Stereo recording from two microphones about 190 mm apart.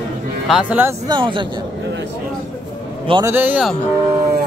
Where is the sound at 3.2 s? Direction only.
10° right (ahead or behind).